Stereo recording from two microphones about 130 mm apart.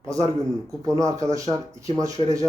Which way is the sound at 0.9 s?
25° right (ahead or behind).